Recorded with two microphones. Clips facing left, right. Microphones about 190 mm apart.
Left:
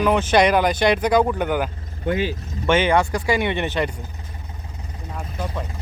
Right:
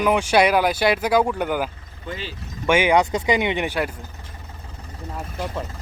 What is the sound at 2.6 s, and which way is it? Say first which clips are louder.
Speech: even; 10° right (ahead or behind).